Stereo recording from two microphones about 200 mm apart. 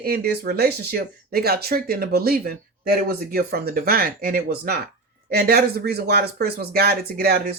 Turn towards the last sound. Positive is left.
turn(degrees=-50)  # may be behind; listen again after turning